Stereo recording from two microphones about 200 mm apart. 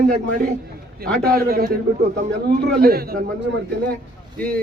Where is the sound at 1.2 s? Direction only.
50° right (ahead or behind).